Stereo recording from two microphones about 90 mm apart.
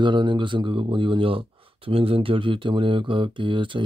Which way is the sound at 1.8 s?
90° right.